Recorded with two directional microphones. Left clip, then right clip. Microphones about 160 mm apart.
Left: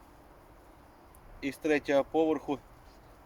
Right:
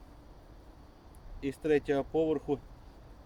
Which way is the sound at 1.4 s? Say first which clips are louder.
Even; 15° right (ahead or behind).